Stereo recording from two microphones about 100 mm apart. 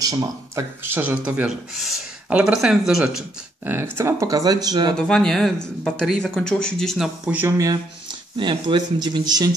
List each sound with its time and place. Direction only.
0.0 s speech: 35° right (ahead or behind)
0.8 s speech: 20° right (ahead or behind)
3.6 s speech: 20° right (ahead or behind); by 4.9 s 45° right (ahead or behind)
4.9 s speech: 5° left (ahead or behind)
7.4 s speech: 35° right (ahead or behind)
8.4 s speech: 55° right (ahead or behind)